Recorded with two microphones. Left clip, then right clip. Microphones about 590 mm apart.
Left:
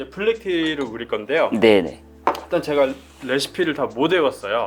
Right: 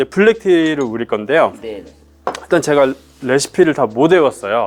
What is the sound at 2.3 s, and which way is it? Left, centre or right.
Speech, right.